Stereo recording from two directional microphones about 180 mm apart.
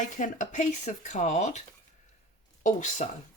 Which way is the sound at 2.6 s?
45° left (ahead or behind).